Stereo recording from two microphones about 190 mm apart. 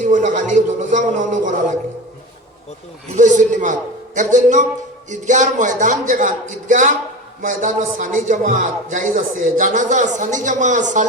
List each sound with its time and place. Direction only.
0.0 s a man's voice: 40° right (ahead or behind)
3.2 s a man's voice: 40° right (ahead or behind)